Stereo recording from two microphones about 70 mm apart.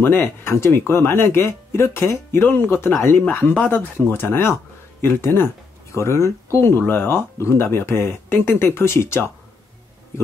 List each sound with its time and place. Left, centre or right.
0.0 s speech: left
4.1 s speech: left